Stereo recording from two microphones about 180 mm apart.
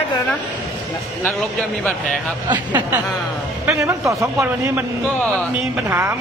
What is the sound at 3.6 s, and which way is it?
A man's voice, 15° right (ahead or behind).